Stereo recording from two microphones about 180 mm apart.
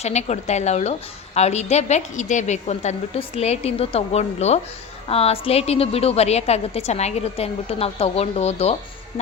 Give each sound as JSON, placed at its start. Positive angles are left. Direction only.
{"t": 0.0, "sound": "a woman's voice", "side_deg": 40}